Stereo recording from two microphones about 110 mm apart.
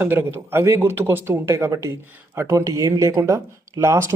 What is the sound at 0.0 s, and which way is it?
Speech, 20° right (ahead or behind).